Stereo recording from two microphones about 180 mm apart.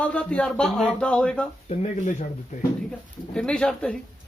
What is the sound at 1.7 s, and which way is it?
Speech, 40° left (ahead or behind).